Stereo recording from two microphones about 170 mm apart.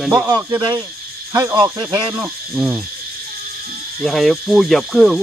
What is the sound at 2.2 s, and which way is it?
Hoot, 5° right (ahead or behind).